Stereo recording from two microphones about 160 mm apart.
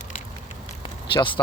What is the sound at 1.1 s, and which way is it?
Speech, 30° left (ahead or behind).